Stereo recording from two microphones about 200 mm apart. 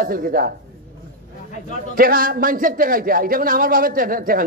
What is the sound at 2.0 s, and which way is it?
A man's voice, 45° right (ahead or behind).